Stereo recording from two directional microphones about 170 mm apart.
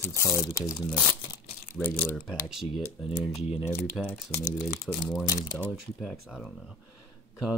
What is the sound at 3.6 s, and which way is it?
Speech, 15° left (ahead or behind).